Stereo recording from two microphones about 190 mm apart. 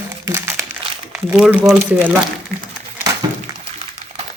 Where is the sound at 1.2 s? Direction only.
5° right (ahead or behind).